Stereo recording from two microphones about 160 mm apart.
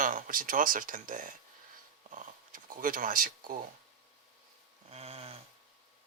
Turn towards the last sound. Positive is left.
turn(degrees=-40)  # may be behind; listen again after turning